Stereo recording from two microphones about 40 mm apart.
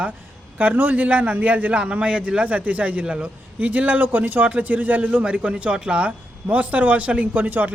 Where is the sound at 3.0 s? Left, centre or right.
Right.